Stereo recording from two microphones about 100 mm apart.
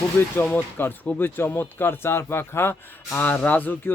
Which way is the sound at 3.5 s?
20° left (ahead or behind).